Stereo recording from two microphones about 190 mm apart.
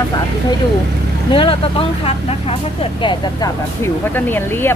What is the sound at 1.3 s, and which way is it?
Speech, 30° left (ahead or behind).